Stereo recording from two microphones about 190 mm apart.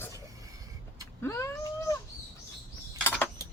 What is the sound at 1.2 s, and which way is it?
Vehicle, 15° left (ahead or behind).